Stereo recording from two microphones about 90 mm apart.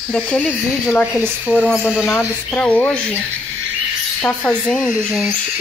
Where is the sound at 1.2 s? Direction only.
15° left (ahead or behind).